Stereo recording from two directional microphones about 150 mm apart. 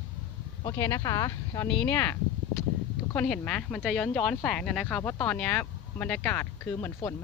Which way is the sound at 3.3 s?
5° left (ahead or behind).